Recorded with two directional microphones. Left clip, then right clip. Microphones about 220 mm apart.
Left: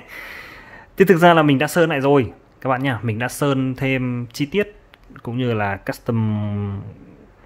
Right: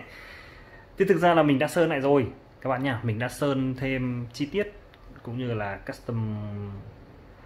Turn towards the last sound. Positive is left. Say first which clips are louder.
# left 10 dB
turn(degrees=45)  # may be behind; listen again after turning